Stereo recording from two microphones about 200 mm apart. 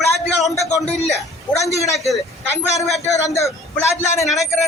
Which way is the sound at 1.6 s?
35° left (ahead or behind).